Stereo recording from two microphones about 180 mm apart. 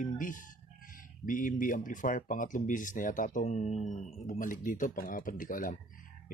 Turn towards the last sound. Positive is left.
turn(degrees=50)  # may be behind; listen again after turning